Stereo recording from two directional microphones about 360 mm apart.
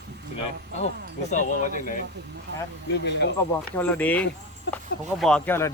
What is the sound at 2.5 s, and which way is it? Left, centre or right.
Speech, right.